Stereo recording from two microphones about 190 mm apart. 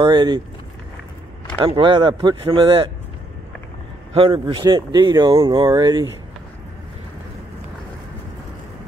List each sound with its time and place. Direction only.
0.0 s speech: 25° right (ahead or behind)
1.6 s speech: 25° right (ahead or behind)
4.1 s speech: 30° right (ahead or behind)